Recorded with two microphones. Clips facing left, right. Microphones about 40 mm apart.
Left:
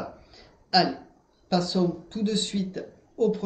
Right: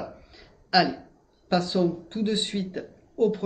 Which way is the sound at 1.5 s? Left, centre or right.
Right.